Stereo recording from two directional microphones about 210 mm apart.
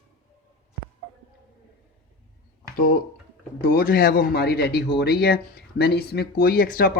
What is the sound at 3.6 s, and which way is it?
Speech, 45° left (ahead or behind).